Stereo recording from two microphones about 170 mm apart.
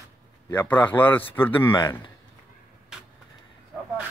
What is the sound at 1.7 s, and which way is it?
Speech, 25° left (ahead or behind).